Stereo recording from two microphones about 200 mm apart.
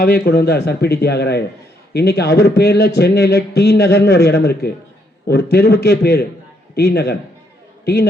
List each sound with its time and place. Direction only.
0.0 s a man's voice: 50° left (ahead or behind)